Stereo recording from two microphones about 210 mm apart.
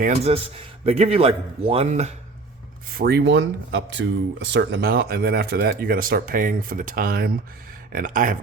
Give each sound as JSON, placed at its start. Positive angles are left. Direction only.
{"t": 0.0, "sound": "a man's voice", "side_deg": -30}
{"t": 2.9, "sound": "speech", "side_deg": -50}